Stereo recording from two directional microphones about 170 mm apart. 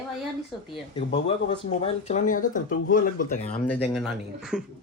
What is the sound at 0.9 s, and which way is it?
Speech, 30° left (ahead or behind).